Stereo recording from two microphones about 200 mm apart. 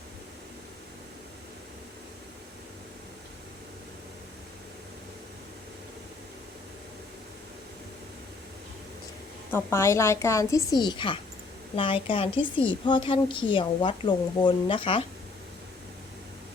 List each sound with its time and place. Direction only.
9.5 s a woman's voice: 10° left (ahead or behind); by 15.0 s 25° left (ahead or behind)